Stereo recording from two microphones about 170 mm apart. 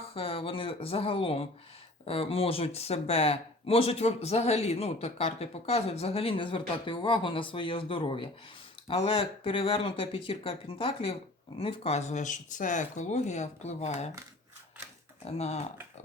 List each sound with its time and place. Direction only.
0.1 s speech: 35° left (ahead or behind)
15.2 s speech: 40° left (ahead or behind)